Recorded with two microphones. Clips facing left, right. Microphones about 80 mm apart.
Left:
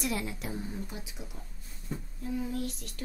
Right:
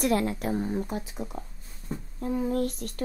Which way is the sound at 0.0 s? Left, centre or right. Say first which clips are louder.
Right 9 dB; right.